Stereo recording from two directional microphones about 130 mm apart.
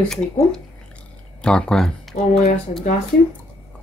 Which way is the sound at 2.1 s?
60° left (ahead or behind).